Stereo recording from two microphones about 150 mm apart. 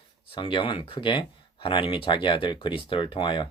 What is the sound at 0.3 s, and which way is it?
Speech, 35° left (ahead or behind).